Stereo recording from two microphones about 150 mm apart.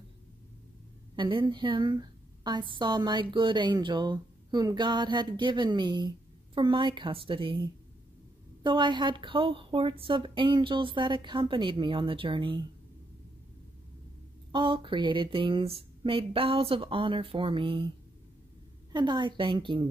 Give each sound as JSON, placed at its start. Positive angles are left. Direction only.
{"t": 1.1, "sound": "a woman's voice", "side_deg": -30}
{"t": 8.6, "sound": "a woman's voice", "side_deg": -30}
{"t": 14.5, "sound": "a woman's voice", "side_deg": -35}